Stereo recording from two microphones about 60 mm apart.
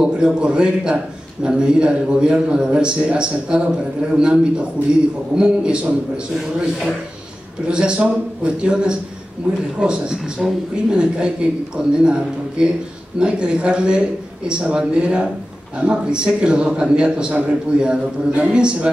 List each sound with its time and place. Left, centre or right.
0.0 s a man's voice: centre
7.6 s a man's voice: centre